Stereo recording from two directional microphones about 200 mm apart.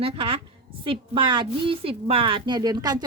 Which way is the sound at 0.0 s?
30° right (ahead or behind).